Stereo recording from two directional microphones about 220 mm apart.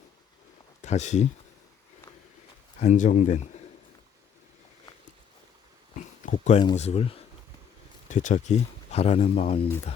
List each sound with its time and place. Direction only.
0.8 s speech: 30° left (ahead or behind)
2.8 s speech: 35° left (ahead or behind)
6.2 s a sound: 35° left (ahead or behind)
6.6 s speech: 25° left (ahead or behind)